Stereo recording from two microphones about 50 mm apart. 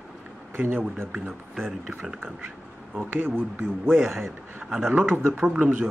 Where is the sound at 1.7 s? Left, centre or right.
Centre.